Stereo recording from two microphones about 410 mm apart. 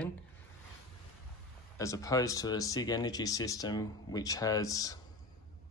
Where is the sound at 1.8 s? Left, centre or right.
Centre.